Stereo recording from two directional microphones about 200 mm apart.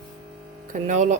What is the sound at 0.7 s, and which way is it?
Speech, 40° right (ahead or behind).